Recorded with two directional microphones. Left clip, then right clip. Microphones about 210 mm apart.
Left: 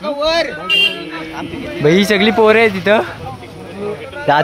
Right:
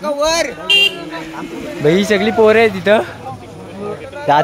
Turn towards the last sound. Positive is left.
turn(degrees=15)  # may be behind; listen again after turning